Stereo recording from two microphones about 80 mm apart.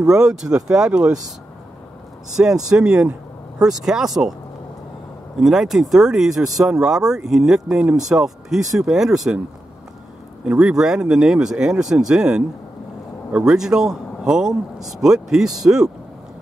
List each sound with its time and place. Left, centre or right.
0.1 s a man's voice: centre
2.3 s a man's voice: centre
5.4 s speech: centre
10.4 s a man's voice: centre